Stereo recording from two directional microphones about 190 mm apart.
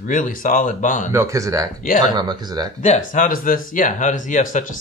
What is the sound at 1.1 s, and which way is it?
Speech, 15° right (ahead or behind).